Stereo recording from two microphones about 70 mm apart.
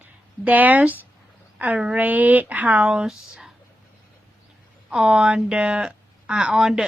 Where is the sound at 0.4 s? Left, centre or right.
Right; by 3.5 s centre.